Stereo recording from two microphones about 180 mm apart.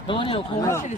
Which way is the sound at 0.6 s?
15° left (ahead or behind).